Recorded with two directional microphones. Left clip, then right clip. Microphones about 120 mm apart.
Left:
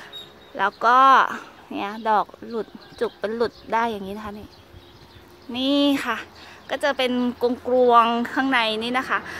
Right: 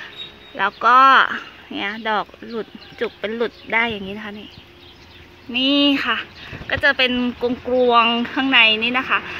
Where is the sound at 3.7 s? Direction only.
15° left (ahead or behind).